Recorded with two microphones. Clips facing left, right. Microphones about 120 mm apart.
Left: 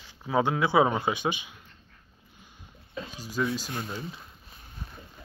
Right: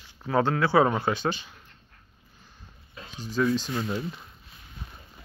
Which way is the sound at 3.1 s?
10° left (ahead or behind).